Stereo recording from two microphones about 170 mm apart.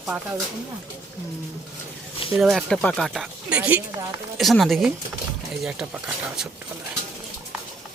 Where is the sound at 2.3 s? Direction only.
Centre (ahead or behind).